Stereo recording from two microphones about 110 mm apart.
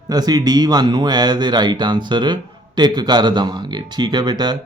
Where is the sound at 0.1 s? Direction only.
40° right (ahead or behind).